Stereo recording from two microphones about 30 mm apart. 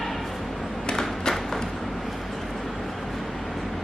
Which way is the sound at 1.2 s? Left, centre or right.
Centre.